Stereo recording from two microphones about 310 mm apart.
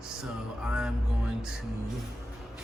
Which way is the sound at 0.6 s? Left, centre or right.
Centre.